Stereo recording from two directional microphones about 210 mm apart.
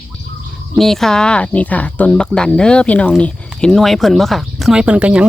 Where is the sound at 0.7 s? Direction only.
Centre (ahead or behind).